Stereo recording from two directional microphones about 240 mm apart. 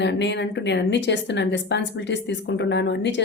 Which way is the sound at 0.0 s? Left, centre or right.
Left.